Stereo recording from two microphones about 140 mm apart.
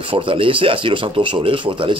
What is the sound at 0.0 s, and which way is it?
Speech, 40° right (ahead or behind).